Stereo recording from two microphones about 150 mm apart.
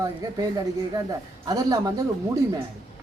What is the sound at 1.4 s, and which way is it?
Speech, 25° right (ahead or behind).